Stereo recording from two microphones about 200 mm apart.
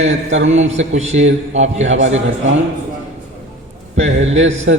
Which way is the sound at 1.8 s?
70° right (ahead or behind).